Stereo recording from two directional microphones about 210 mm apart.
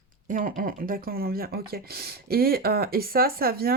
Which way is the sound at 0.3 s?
40° right (ahead or behind).